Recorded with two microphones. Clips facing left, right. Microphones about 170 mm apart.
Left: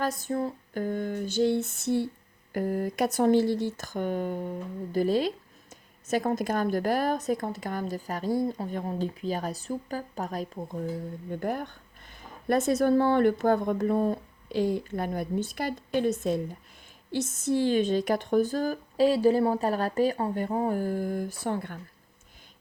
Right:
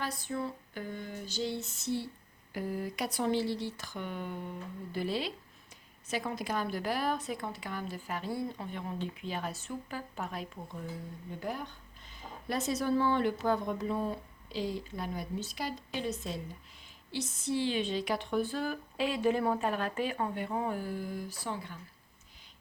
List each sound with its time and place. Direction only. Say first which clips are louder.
0.0 s a sound: left 7 dB; 45° left (ahead or behind)
2.5 s a woman's voice: left 7 dB; 50° left (ahead or behind)
11.3 s speech: left 7 dB; 55° left (ahead or behind)